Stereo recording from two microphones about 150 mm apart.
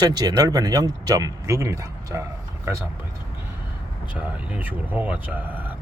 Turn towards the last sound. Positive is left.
turn(degrees=-10)  # may be behind; listen again after turning